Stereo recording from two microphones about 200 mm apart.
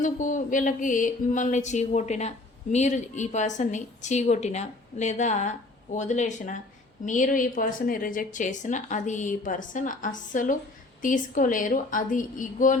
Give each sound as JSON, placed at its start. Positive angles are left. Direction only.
{"t": 0.0, "sound": "a woman's voice", "side_deg": 40}